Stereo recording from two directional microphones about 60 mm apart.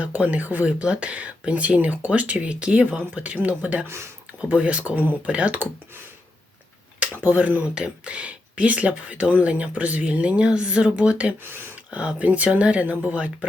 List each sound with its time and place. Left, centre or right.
0.0 s speech: right
3.8 s speech: right
4.4 s speech: right
7.2 s speech: right
11.4 s speech: right
11.9 s speech: centre